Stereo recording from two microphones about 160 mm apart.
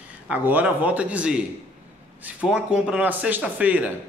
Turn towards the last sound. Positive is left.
turn(degrees=-10)  # may be behind; listen again after turning